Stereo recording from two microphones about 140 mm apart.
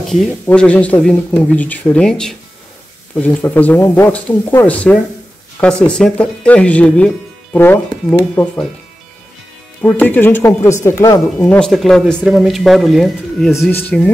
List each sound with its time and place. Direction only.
0.0 s speech: centre (ahead or behind)
9.8 s speech: 10° left (ahead or behind)
11.3 s speech: 10° left (ahead or behind)
13.7 s speech: 10° left (ahead or behind)